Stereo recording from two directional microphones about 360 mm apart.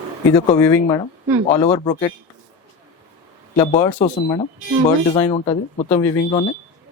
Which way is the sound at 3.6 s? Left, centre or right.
Centre.